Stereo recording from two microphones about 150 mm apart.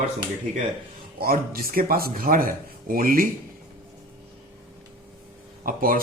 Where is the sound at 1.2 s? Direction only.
75° right (ahead or behind).